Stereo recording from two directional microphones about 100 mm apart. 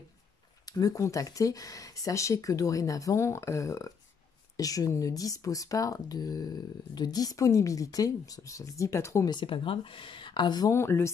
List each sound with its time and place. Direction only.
0.7 s speech: 40° left (ahead or behind)
9.3 s speech: 60° left (ahead or behind)
10.7 s speech: 25° left (ahead or behind)